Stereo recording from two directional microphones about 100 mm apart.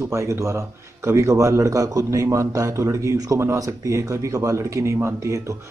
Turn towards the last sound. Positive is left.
turn(degrees=-30)  # may be behind; listen again after turning